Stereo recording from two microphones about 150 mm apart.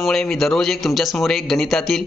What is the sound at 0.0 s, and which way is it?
Speech, 5° left (ahead or behind).